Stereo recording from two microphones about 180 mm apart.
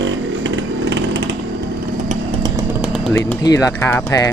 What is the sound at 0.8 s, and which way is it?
Chainsaw, 80° right.